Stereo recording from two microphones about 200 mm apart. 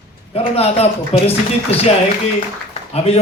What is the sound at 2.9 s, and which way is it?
Speech, 30° left (ahead or behind).